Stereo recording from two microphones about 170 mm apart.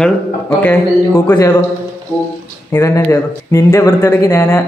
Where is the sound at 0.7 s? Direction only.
10° left (ahead or behind).